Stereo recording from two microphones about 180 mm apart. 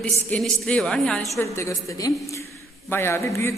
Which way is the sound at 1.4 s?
15° left (ahead or behind).